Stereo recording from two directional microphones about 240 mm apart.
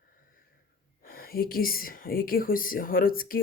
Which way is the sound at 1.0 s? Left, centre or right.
Left.